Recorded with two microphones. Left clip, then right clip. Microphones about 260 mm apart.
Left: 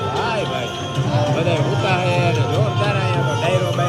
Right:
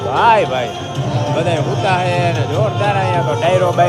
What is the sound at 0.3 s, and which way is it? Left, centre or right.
A man's voice, centre.